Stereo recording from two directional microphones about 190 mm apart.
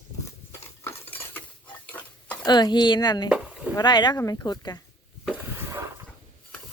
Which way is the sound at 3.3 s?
5° right (ahead or behind).